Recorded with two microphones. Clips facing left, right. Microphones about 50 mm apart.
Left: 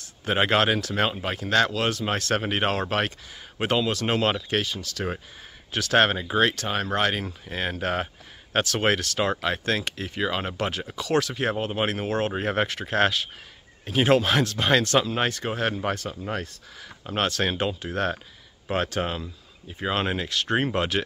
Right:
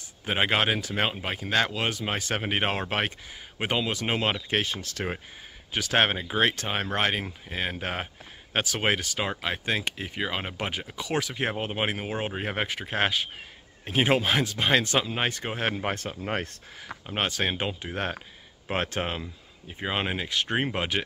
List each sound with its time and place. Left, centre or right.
0.2 s speech: centre
4.6 s speech: right
5.7 s speech: centre; by 16.4 s right
17.0 s speech: centre